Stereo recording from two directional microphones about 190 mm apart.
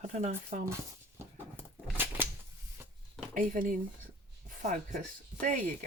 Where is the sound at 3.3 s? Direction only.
45° right (ahead or behind).